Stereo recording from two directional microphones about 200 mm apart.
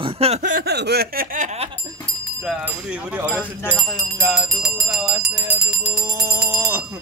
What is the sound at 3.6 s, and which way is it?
Speech, 5° left (ahead or behind).